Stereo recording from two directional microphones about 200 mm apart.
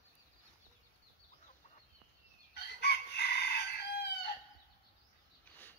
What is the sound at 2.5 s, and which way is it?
Chicken, 55° left (ahead or behind).